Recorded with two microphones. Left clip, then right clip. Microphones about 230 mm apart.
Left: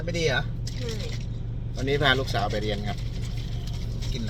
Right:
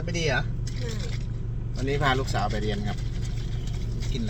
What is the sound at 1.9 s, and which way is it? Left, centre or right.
Speech, centre.